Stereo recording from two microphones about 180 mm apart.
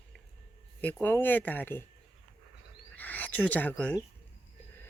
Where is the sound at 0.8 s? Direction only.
10° left (ahead or behind).